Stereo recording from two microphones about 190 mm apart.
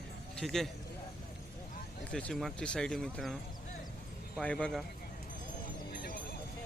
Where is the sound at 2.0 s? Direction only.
5° left (ahead or behind).